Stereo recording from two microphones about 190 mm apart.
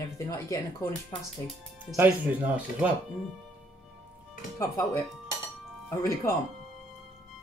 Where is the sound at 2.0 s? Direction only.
10° right (ahead or behind).